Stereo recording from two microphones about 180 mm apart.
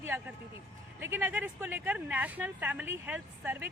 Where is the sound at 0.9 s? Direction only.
10° right (ahead or behind).